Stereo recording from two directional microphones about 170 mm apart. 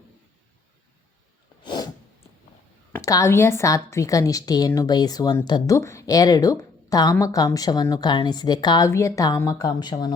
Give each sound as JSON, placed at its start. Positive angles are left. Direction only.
{"t": 1.6, "sound": "sneeze", "side_deg": 25}
{"t": 2.9, "sound": "a woman's voice", "side_deg": 20}